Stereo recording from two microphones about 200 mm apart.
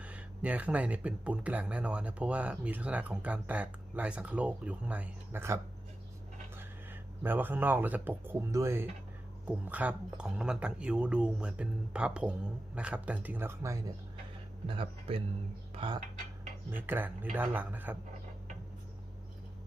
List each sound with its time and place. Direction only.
0.0 s speech: 5° right (ahead or behind)
6.6 s speech: 10° right (ahead or behind)
14.7 s speech: 25° right (ahead or behind)
15.7 s a sound: 25° right (ahead or behind)
16.7 s speech: 10° right (ahead or behind)